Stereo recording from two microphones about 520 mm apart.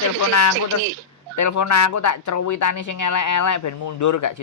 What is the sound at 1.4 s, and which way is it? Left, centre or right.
Speech, left.